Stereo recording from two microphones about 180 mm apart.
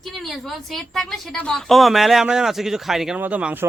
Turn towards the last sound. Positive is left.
turn(degrees=-5)  # may be behind; listen again after turning